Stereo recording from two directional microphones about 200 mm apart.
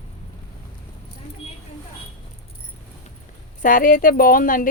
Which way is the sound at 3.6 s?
45° left (ahead or behind).